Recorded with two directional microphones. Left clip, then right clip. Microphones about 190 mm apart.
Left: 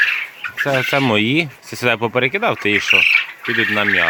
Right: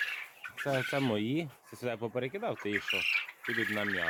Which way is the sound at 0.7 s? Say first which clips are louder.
Left 15 dB; centre (ahead or behind).